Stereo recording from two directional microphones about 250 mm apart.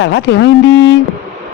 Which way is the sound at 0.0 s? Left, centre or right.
Left.